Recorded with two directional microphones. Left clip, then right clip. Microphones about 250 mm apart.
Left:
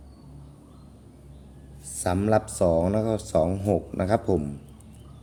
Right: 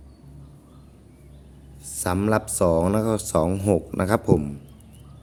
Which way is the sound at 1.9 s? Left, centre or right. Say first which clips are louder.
Right 1 dB; centre.